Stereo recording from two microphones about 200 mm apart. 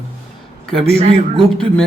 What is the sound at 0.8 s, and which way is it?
Speech, 30° right (ahead or behind).